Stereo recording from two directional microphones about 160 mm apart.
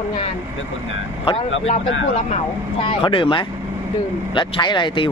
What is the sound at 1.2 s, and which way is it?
Speech, 40° left (ahead or behind).